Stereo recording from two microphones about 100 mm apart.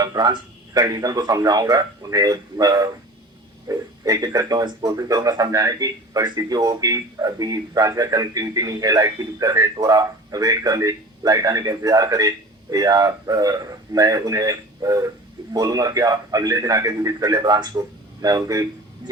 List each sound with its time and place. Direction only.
0.0 s speech: 40° right (ahead or behind)